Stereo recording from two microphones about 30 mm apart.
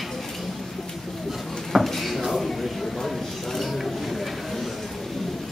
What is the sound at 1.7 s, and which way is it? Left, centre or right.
Drawer open or close, centre.